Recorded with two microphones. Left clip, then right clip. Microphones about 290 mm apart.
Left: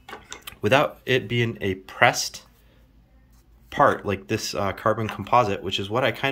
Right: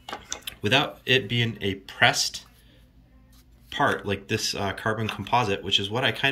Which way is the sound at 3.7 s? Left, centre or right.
Centre.